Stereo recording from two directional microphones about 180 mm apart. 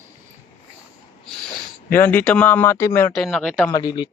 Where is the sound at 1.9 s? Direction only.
10° left (ahead or behind).